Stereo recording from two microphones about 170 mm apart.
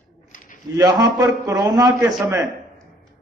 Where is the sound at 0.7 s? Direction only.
20° right (ahead or behind).